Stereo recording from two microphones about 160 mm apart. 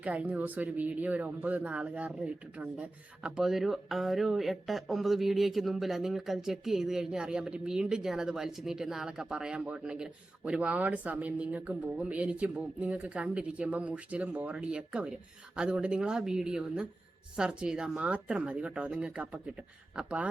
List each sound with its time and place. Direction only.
0.0 s speech: 10° right (ahead or behind)